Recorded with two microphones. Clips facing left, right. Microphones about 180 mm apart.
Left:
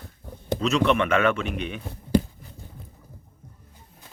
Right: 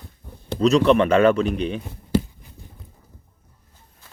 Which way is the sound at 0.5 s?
35° right (ahead or behind).